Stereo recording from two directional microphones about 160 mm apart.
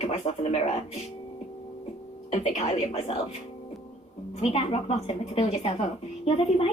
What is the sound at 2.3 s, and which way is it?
Speech, 40° left (ahead or behind).